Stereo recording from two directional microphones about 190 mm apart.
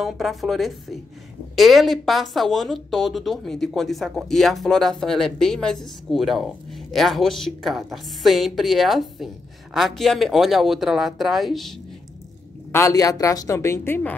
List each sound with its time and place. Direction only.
0.0 s speech: centre (ahead or behind)
12.7 s a woman's voice: 15° left (ahead or behind)